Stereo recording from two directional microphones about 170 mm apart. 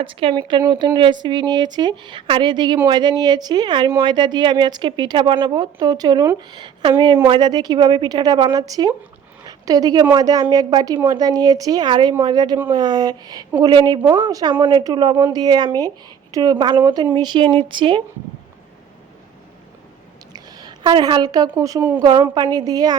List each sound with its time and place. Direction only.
0.0 s a woman's voice: 30° right (ahead or behind)
20.3 s a woman's voice: 25° right (ahead or behind)
21.9 s a woman's voice: 25° right (ahead or behind)